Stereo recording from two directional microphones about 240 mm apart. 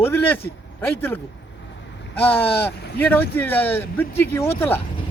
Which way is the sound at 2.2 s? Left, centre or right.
Centre.